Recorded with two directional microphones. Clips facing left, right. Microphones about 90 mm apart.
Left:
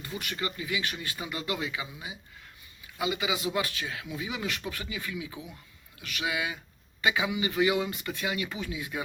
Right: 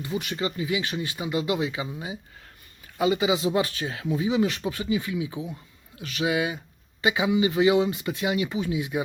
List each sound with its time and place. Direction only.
0.0 s speech: 20° right (ahead or behind)